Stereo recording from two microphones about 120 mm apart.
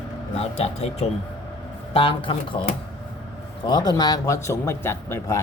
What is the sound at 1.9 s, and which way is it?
Speech, 45° left (ahead or behind).